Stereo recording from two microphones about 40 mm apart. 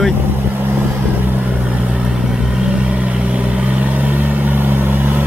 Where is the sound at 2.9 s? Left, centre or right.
Right.